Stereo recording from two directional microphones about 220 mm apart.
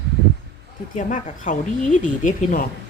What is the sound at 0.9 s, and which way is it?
Speech, 35° left (ahead or behind).